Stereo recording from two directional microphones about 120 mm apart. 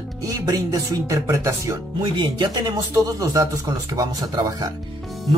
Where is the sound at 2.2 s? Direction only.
40° right (ahead or behind).